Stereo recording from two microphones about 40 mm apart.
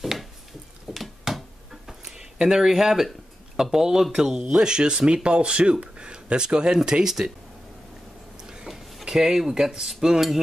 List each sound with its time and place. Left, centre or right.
0.0 s a sound: centre
2.3 s speech: right
2.6 s cutlery: centre
4.2 s speech: centre
9.0 s speech: centre
9.5 s cutlery: centre